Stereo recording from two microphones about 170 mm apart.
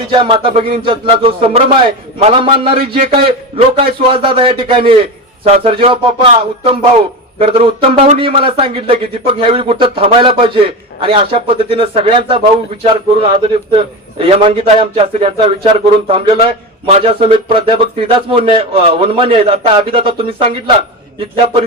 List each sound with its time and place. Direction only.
0.1 s speech: 30° right (ahead or behind)
7.3 s speech: 35° right (ahead or behind)
8.2 s speech: 30° right (ahead or behind)